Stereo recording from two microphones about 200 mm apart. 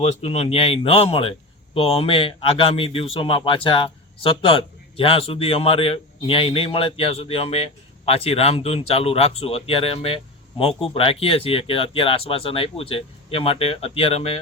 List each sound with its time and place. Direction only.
0.0 s speech: 30° left (ahead or behind)